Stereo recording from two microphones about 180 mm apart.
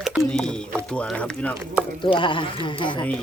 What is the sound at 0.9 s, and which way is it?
Speech, 5° left (ahead or behind).